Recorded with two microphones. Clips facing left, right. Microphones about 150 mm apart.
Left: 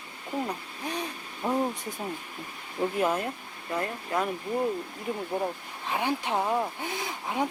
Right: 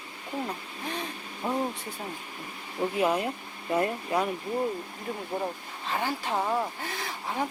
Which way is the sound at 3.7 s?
25° right (ahead or behind).